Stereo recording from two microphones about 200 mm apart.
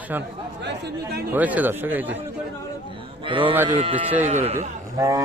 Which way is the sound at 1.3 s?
10° right (ahead or behind).